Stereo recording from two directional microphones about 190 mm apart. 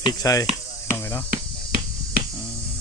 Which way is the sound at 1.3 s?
50° right (ahead or behind).